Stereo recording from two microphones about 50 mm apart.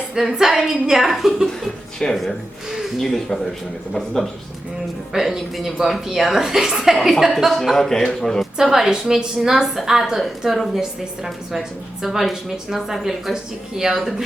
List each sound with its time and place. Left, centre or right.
0.1 s speech: centre
5.1 s a woman's voice: centre
8.6 s a woman's voice: centre